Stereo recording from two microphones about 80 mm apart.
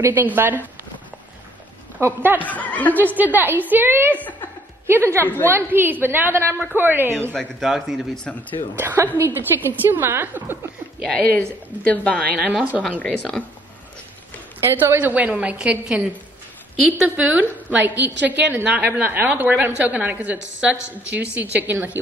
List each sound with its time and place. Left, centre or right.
0.0 s a woman's voice: right
2.0 s speech: right
2.4 s speech: centre
3.0 s a woman's voice: right
5.2 s speech: left
5.5 s a woman's voice: right
7.3 s speech: centre
8.2 s speech: centre
8.7 s a woman's voice: right
11.1 s speech: centre
12.4 s a woman's voice: centre
13.0 s speech: centre
14.6 s a woman's voice: right